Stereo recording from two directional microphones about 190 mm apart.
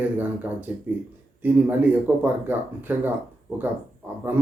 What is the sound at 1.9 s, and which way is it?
Speech, 10° right (ahead or behind).